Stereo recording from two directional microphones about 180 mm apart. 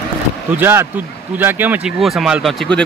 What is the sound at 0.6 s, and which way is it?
Speech, 15° right (ahead or behind).